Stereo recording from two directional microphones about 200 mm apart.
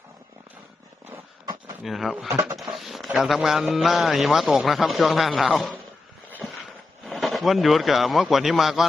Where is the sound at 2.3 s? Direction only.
15° right (ahead or behind).